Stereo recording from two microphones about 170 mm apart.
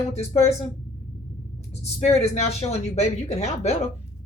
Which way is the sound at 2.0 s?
40° left (ahead or behind).